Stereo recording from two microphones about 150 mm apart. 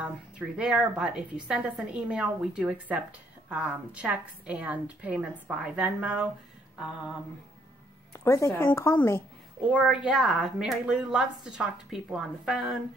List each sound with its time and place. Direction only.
0.6 s a woman's voice: 5° right (ahead or behind)
8.1 s a woman's voice: 20° left (ahead or behind)
9.7 s a woman's voice: 5° right (ahead or behind)